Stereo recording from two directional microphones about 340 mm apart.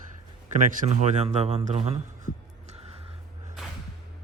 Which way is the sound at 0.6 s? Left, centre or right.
Centre.